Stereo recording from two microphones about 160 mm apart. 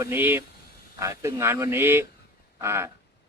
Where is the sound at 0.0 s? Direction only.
15° right (ahead or behind).